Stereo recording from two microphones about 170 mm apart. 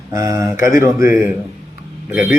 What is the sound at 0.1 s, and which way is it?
A man's voice, 20° right (ahead or behind).